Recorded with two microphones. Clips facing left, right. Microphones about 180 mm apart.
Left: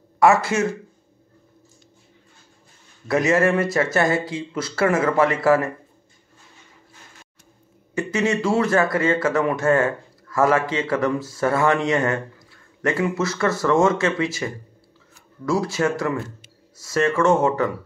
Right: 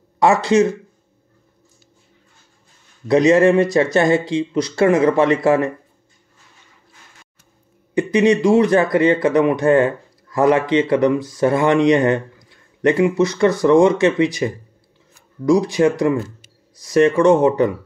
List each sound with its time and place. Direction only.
0.2 s speech: 20° right (ahead or behind)
3.1 s speech: 20° right (ahead or behind)
7.9 s speech: 15° right (ahead or behind)